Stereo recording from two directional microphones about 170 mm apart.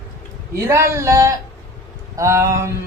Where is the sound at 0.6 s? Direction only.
15° right (ahead or behind).